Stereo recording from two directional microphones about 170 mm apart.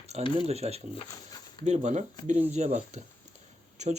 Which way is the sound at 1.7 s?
40° right (ahead or behind).